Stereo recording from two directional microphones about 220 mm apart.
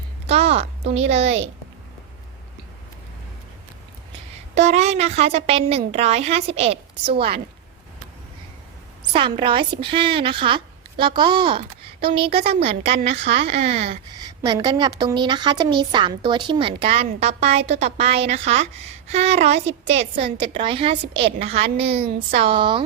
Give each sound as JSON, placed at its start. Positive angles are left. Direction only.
{"t": 0.3, "sound": "speech", "side_deg": -25}
{"t": 4.5, "sound": "a woman's voice", "side_deg": -30}
{"t": 9.1, "sound": "a woman's voice", "side_deg": -25}
{"t": 12.8, "sound": "a woman's voice", "side_deg": -50}
{"t": 13.5, "sound": "a woman's voice", "side_deg": -30}